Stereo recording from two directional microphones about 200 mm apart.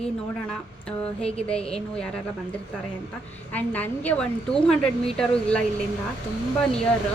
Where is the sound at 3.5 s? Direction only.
10° left (ahead or behind).